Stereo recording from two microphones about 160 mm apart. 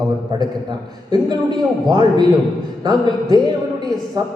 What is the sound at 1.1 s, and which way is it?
Speech, 25° right (ahead or behind).